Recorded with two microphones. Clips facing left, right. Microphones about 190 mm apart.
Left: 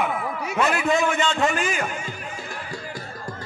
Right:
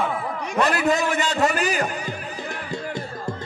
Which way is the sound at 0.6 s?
Centre (ahead or behind).